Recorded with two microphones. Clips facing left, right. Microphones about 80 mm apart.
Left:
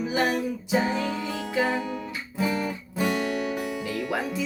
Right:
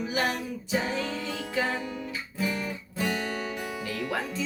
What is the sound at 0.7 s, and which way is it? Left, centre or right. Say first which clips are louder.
Music: left 4 dB; centre.